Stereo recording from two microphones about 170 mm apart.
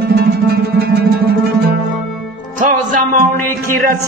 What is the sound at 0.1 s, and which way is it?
Music, 70° right (ahead or behind).